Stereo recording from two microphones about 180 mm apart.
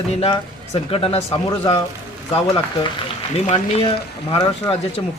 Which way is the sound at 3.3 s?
35° left (ahead or behind).